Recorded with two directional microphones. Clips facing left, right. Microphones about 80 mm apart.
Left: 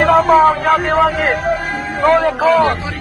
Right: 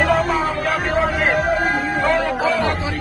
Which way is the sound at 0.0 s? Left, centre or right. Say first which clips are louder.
Left 8 dB; left.